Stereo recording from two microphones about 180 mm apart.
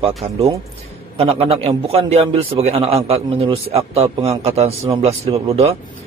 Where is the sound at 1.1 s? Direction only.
30° right (ahead or behind).